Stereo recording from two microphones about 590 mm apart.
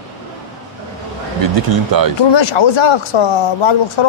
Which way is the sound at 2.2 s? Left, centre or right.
Left.